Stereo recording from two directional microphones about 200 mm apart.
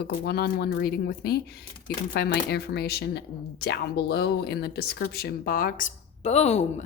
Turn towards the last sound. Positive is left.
turn(degrees=35)  # may be behind; listen again after turning